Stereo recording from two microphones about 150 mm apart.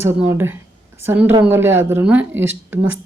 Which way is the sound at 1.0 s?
15° right (ahead or behind).